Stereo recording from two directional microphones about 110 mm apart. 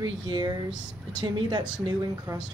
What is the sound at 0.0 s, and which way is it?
Speech, 45° right (ahead or behind).